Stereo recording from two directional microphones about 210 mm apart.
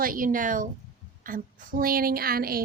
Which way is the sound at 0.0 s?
40° right (ahead or behind).